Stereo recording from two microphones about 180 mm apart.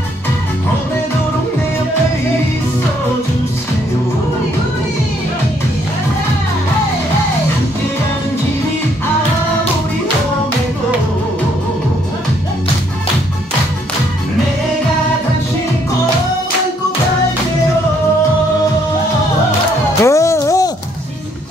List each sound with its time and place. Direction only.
20.0 s music: 15° left (ahead or behind)